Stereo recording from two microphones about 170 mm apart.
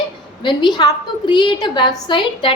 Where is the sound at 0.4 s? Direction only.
25° left (ahead or behind).